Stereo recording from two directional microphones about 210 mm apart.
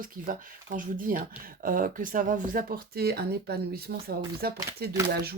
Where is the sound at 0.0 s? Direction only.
40° right (ahead or behind).